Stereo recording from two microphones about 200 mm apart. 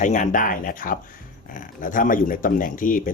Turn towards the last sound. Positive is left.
turn(degrees=40)  # may be behind; listen again after turning